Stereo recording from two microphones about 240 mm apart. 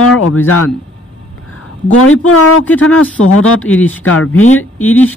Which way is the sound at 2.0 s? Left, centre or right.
Left.